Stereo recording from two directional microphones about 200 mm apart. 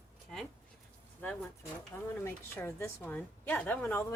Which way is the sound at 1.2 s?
5° left (ahead or behind).